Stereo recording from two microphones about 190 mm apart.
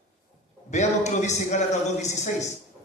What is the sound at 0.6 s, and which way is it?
A man's voice, 40° left (ahead or behind).